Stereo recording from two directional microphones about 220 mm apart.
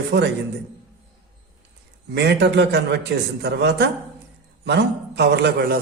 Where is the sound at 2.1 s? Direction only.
50° right (ahead or behind).